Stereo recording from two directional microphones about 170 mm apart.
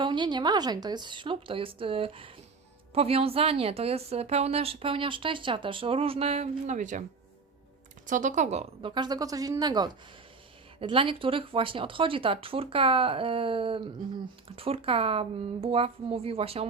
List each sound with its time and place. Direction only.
0.0 s a woman's voice: 25° right (ahead or behind); by 7.0 s 45° right (ahead or behind)
8.0 s speech: 50° right (ahead or behind)
9.0 s a woman's voice: 25° right (ahead or behind)